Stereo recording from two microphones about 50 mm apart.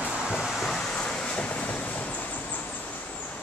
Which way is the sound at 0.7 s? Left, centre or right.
Centre.